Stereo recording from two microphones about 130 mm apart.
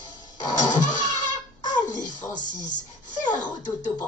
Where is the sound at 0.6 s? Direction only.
75° left (ahead or behind).